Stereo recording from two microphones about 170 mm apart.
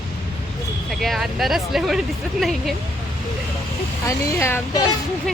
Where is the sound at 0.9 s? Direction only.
Centre (ahead or behind).